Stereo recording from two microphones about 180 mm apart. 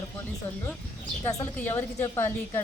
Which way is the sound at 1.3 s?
15° left (ahead or behind).